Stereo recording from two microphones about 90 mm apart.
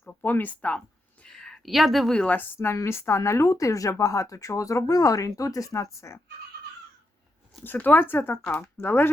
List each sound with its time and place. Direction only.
0.1 s speech: 20° left (ahead or behind)
1.3 s a woman's voice: 5° left (ahead or behind)
2.3 s speech: 25° left (ahead or behind)
7.6 s speech: 20° left (ahead or behind)